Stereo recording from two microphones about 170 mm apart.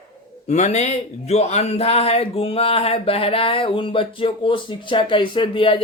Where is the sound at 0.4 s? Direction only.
40° left (ahead or behind).